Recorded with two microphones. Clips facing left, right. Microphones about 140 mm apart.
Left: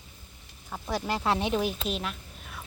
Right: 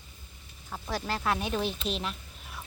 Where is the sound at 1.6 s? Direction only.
5° left (ahead or behind).